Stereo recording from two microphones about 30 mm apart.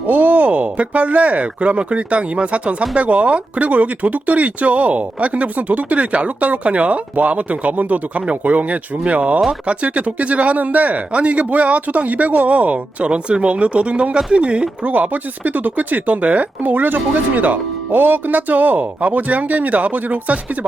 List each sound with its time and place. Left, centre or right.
0.1 s speech: right
10.6 s speech: right
11.1 s speech: right
13.1 s speech: right
14.8 s speech: right